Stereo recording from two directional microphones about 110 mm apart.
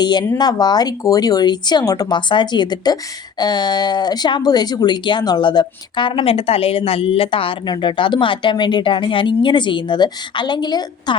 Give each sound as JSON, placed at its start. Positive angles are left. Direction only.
{"t": 0.0, "sound": "a woman's voice", "side_deg": 40}